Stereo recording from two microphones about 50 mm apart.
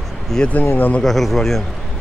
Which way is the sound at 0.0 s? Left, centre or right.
Centre.